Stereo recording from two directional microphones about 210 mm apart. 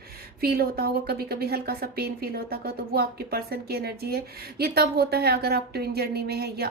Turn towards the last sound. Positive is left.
turn(degrees=-50)  # may be behind; listen again after turning